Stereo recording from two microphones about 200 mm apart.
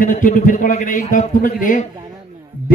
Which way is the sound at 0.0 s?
40° left (ahead or behind).